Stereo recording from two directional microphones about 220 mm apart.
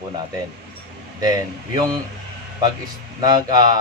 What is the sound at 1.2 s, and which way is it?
Speech, 15° right (ahead or behind).